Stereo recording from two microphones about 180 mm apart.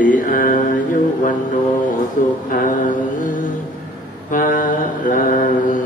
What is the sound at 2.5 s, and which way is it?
Mantra, 45° left (ahead or behind).